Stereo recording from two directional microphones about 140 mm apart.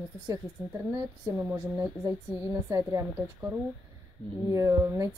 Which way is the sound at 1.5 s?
25° right (ahead or behind).